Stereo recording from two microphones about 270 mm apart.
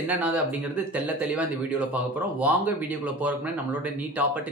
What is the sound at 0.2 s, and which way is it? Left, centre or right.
Speech, centre.